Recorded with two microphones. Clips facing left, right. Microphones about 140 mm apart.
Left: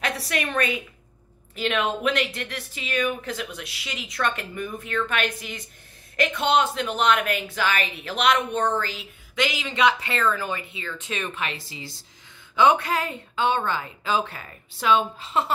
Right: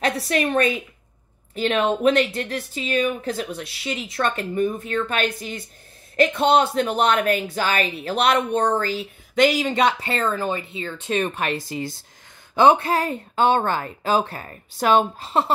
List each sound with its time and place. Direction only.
0.0 s speech: 35° right (ahead or behind); by 11.9 s 50° right (ahead or behind)
12.5 s speech: 35° right (ahead or behind)